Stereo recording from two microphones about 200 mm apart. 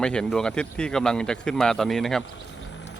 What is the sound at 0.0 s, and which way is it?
Speech, 5° left (ahead or behind).